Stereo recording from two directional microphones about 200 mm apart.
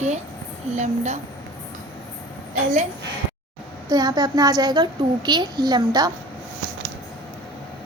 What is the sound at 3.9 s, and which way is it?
A woman's voice, 20° right (ahead or behind).